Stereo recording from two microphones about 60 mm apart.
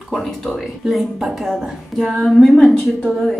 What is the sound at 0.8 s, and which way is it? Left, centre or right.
A woman's voice, centre.